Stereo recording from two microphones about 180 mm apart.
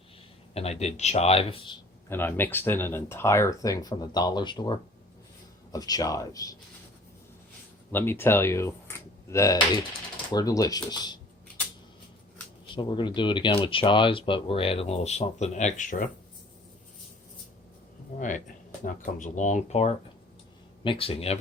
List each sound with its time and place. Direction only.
0.5 s speech: 35° left (ahead or behind)
2.0 s speech: 10° left (ahead or behind)
7.9 s speech: 10° left (ahead or behind)
12.7 s speech: 25° left (ahead or behind); by 16.0 s 45° left (ahead or behind)
18.2 s speech: 45° left (ahead or behind)